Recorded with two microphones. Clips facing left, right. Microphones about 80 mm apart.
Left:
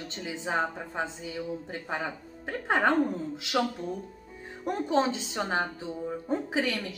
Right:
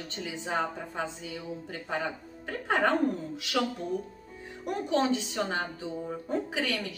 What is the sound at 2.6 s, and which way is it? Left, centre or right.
Speech, left.